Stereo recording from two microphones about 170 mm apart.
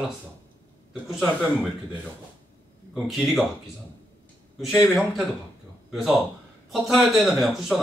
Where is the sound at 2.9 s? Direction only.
Centre (ahead or behind).